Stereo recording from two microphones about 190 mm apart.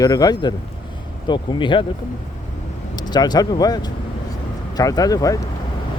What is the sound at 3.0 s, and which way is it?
Speech, 20° left (ahead or behind).